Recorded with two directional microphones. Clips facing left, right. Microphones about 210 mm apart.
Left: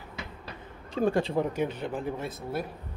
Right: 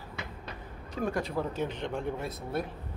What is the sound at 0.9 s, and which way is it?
Speech, 30° left (ahead or behind).